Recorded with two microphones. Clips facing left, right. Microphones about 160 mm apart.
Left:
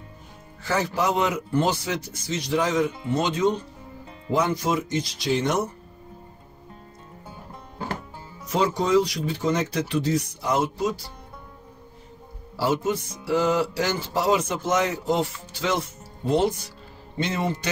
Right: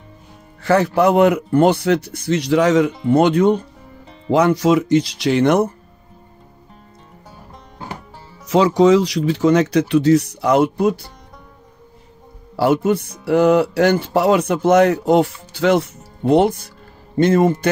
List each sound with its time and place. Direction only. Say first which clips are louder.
0.6 s speech: right 10 dB; 65° right (ahead or behind)
4.3 s speech: right 9 dB; 75° right (ahead or behind)
8.5 s speech: right 10 dB; 85° right; by 11.0 s 60° right (ahead or behind)
12.5 s a man's voice: right 8 dB; 60° right (ahead or behind)